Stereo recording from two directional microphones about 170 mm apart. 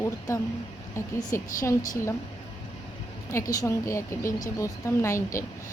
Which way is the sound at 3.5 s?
20° left (ahead or behind).